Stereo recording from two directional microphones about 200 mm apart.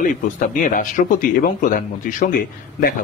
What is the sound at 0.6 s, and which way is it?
Speech, 45° left (ahead or behind).